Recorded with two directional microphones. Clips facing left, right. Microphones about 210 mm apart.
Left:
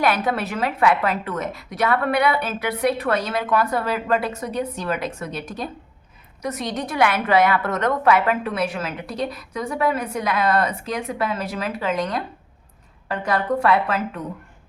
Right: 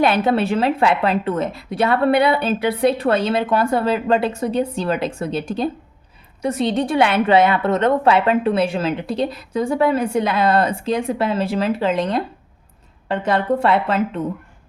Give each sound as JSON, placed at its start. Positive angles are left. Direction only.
{"t": 0.0, "sound": "a woman's voice", "side_deg": -25}